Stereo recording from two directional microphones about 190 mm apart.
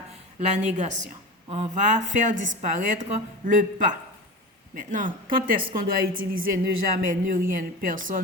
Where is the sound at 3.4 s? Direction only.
45° right (ahead or behind).